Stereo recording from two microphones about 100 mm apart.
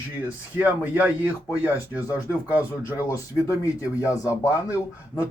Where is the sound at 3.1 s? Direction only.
30° left (ahead or behind).